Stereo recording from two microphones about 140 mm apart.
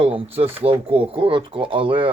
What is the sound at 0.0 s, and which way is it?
Speech, 45° right (ahead or behind).